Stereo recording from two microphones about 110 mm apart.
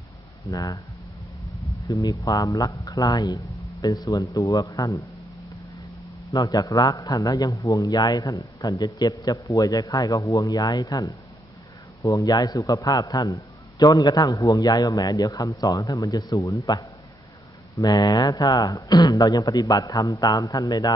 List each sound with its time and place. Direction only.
0.5 s a man's voice: 35° left (ahead or behind)
1.9 s a man's voice: 30° left (ahead or behind)
6.3 s a man's voice: 30° left (ahead or behind)